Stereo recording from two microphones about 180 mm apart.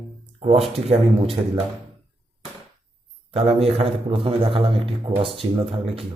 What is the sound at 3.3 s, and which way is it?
Speech, 35° right (ahead or behind).